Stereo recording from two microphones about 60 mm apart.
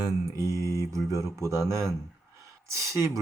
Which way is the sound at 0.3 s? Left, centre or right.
Right.